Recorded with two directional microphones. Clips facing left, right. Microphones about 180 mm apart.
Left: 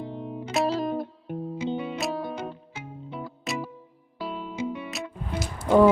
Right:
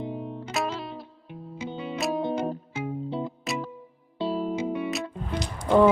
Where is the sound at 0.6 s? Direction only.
40° left (ahead or behind).